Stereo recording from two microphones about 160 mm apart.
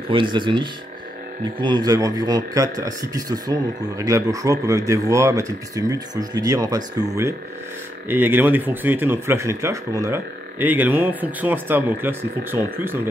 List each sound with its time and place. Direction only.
0.1 s speech: 30° right (ahead or behind); by 13.1 s 15° right (ahead or behind)